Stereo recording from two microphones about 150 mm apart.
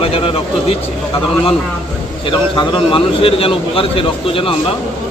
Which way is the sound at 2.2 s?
35° left (ahead or behind).